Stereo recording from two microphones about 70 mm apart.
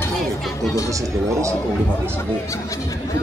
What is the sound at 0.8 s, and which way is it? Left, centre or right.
Speech, right.